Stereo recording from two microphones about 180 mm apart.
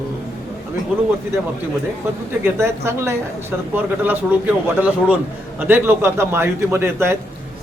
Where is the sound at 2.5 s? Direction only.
15° right (ahead or behind).